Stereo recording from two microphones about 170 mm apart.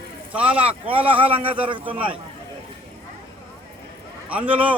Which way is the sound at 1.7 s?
30° right (ahead or behind).